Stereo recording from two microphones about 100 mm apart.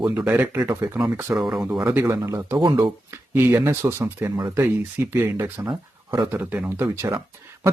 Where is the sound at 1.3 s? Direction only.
Centre (ahead or behind).